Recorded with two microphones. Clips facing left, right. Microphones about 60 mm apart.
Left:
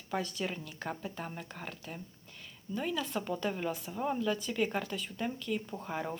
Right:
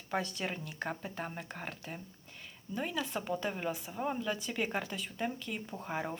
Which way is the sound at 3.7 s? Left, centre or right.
Centre.